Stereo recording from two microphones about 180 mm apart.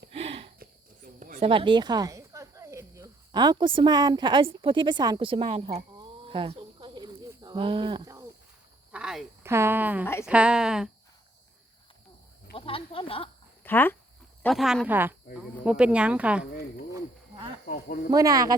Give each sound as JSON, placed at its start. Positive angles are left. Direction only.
{"t": 0.1, "sound": "a sound", "side_deg": -30}
{"t": 0.6, "sound": "cricket", "side_deg": -50}
{"t": 1.4, "sound": "speech", "side_deg": -30}
{"t": 7.3, "sound": "cricket", "side_deg": -25}
{"t": 8.9, "sound": "a sound", "side_deg": -5}
{"t": 9.5, "sound": "a woman's voice", "side_deg": -15}
{"t": 12.5, "sound": "speech", "side_deg": 30}
{"t": 13.7, "sound": "speech", "side_deg": 10}
{"t": 14.4, "sound": "speech", "side_deg": 0}
{"t": 16.5, "sound": "a sound", "side_deg": 60}
{"t": 17.7, "sound": "speech", "side_deg": 55}
{"t": 18.1, "sound": "speech", "side_deg": -20}